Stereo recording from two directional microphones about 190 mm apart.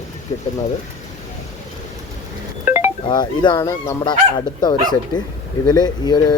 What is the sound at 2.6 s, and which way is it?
Music, 10° right (ahead or behind).